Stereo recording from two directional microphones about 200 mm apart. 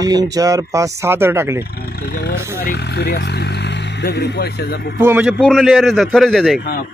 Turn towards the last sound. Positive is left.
turn(degrees=0)  # may be behind; listen again after turning